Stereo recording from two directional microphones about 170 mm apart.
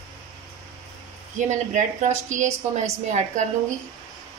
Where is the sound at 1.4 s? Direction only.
45° right (ahead or behind).